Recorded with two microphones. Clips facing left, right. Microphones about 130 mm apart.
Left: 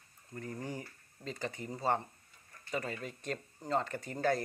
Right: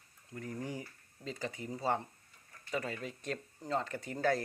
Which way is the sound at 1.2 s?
5° right (ahead or behind).